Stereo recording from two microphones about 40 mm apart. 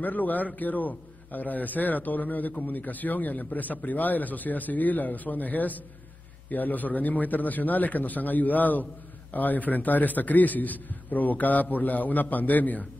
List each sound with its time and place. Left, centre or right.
0.0 s a man's voice: left